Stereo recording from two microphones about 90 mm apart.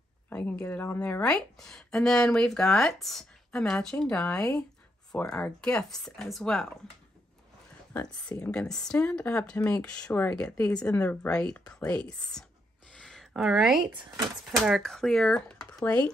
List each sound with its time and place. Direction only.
0.3 s speech: 15° left (ahead or behind)
1.2 s speech: 5° left (ahead or behind)
8.3 s speech: 10° left (ahead or behind)
12.9 s a sound: 5° left (ahead or behind)
13.3 s speech: 5° right (ahead or behind)
14.1 s speech: 40° right (ahead or behind)
14.6 s speech: 5° left (ahead or behind)
15.8 s speech: 15° left (ahead or behind)